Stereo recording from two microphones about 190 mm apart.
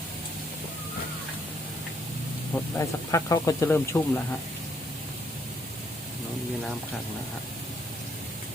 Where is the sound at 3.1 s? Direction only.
15° left (ahead or behind).